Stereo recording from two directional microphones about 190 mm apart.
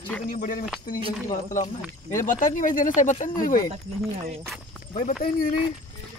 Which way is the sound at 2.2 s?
45° left (ahead or behind).